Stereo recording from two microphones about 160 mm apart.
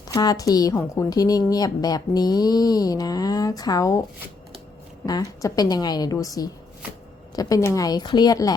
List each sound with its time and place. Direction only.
0.1 s a woman's voice: 25° left (ahead or behind)
5.0 s a woman's voice: 25° left (ahead or behind)